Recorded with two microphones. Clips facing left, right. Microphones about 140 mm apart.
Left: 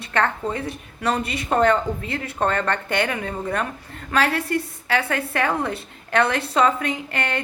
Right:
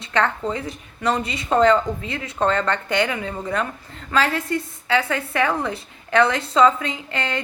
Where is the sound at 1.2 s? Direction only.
60° left (ahead or behind).